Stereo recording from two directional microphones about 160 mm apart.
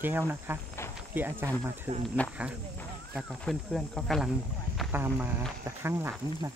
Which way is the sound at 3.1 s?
5° left (ahead or behind).